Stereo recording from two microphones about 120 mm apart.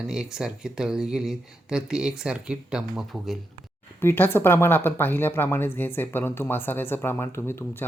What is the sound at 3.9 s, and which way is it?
Speech, 20° left (ahead or behind).